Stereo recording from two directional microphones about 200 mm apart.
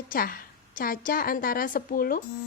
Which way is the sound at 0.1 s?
45° left (ahead or behind).